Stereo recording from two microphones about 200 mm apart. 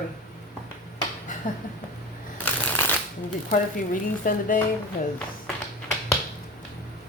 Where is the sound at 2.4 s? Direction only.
10° left (ahead or behind).